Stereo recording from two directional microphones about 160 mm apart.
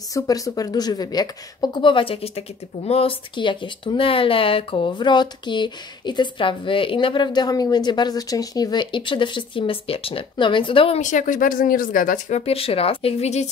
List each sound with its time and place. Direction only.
0.1 s speech: 20° left (ahead or behind)
11.0 s speech: 50° left (ahead or behind)